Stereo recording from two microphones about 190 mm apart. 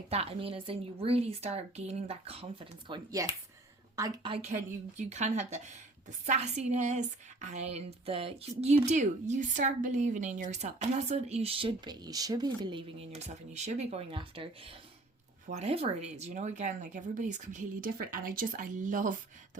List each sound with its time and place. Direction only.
0.1 s a woman's voice: 30° right (ahead or behind)
4.4 s speech: 40° right (ahead or behind)